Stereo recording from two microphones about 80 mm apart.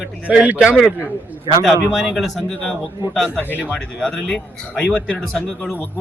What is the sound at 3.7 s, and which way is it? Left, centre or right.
Speech, centre.